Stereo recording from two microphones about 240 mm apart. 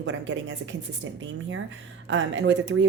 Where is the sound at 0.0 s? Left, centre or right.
Right.